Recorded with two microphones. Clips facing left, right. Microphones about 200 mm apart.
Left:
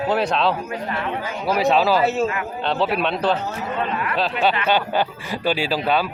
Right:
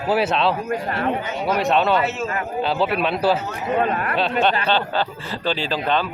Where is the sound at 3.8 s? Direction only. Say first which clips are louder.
Right 3 dB; 45° right (ahead or behind).